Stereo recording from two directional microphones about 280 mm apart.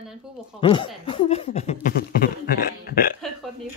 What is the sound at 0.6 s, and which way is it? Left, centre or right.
Speech, centre.